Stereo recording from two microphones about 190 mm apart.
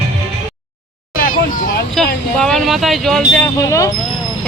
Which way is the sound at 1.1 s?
45° left (ahead or behind).